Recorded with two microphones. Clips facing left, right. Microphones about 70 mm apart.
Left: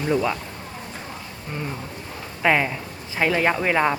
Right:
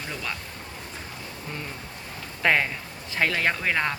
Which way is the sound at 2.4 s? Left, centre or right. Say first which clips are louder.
Left 3 dB; centre.